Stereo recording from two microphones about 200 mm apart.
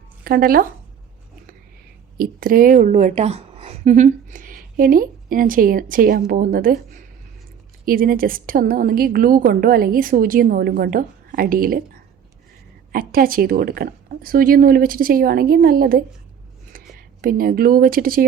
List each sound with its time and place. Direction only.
0.3 s a woman's voice: 45° right (ahead or behind)
2.1 s a woman's voice: 45° right (ahead or behind)
12.9 s a woman's voice: 45° right (ahead or behind)
17.2 s a woman's voice: 45° right (ahead or behind)